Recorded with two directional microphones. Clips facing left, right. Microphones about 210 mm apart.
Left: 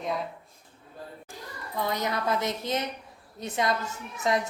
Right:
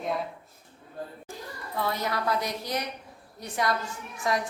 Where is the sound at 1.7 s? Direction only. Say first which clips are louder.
Left 1 dB; 20° left (ahead or behind).